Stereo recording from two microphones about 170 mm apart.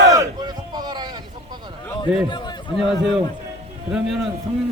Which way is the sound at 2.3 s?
25° left (ahead or behind).